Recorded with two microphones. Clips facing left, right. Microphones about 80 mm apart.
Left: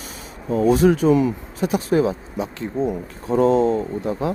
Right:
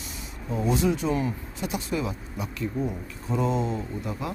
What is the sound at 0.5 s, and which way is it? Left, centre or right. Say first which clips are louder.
Speech: left 9 dB; left.